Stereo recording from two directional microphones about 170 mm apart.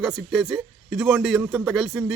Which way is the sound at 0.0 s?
Centre (ahead or behind).